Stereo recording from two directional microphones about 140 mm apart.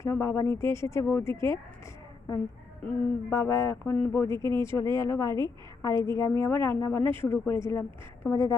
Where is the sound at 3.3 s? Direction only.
20° left (ahead or behind).